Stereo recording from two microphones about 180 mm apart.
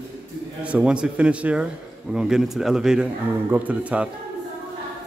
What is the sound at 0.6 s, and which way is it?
A man's voice, 5° right (ahead or behind).